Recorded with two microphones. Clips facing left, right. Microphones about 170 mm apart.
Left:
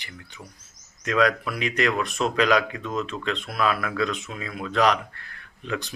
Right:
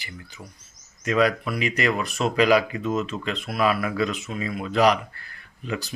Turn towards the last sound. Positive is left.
turn(degrees=-5)  # may be behind; listen again after turning